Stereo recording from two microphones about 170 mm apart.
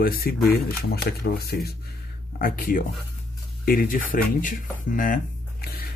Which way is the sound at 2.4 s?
55° left (ahead or behind).